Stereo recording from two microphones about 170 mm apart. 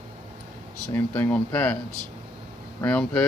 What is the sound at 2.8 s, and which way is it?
Speech, 5° left (ahead or behind).